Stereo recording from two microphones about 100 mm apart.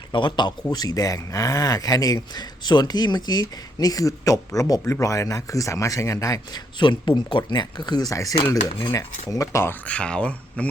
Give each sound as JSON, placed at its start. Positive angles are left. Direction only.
{"t": 0.1, "sound": "speech", "side_deg": 55}
{"t": 6.7, "sound": "speech", "side_deg": 50}
{"t": 9.8, "sound": "speech", "side_deg": 10}